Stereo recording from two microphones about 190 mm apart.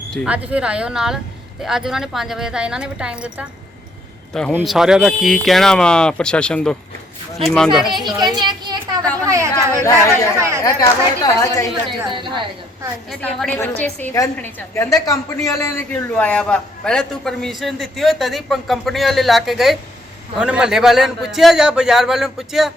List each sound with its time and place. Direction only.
0.1 s a man's voice: 5° right (ahead or behind)
4.5 s a man's voice: centre (ahead or behind)
8.0 s a woman's voice: 20° right (ahead or behind)
9.8 s a woman's voice: 15° left (ahead or behind)
11.9 s a woman's voice: 25° right (ahead or behind)
13.1 s a woman's voice: 5° left (ahead or behind)